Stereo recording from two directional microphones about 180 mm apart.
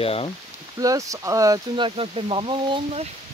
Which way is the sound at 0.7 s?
20° right (ahead or behind).